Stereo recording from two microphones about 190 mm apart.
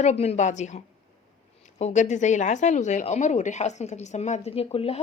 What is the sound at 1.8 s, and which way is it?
A woman's voice, 40° left (ahead or behind).